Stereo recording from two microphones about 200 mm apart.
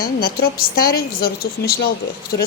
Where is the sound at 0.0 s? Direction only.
50° left (ahead or behind).